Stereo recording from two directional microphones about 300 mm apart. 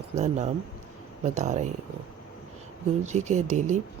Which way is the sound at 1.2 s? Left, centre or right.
Right.